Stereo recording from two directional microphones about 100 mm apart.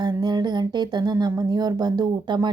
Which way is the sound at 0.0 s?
45° right (ahead or behind).